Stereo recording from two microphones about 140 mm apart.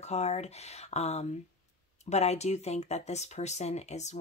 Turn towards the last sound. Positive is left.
turn(degrees=55)  # may be behind; listen again after turning